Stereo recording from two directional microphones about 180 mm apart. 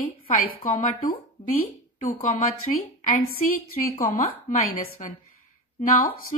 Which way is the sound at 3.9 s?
50° left (ahead or behind).